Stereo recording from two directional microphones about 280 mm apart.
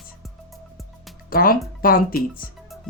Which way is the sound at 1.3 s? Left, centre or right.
Left.